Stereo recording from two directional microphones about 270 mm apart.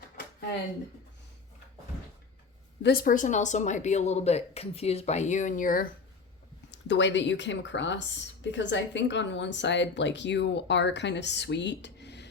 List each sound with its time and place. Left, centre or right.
2.8 s speech: left
6.7 s a woman's voice: left